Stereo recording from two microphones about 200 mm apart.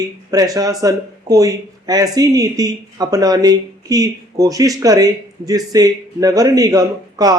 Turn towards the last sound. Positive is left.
turn(degrees=-20)  # may be behind; listen again after turning